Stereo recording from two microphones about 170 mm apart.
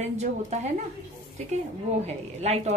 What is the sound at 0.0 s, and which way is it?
Speech, 40° right (ahead or behind).